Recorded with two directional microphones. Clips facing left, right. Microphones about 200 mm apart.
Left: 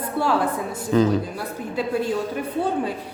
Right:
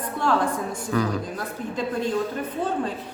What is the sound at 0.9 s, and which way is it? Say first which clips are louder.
Speech: left 6 dB; 25° left (ahead or behind).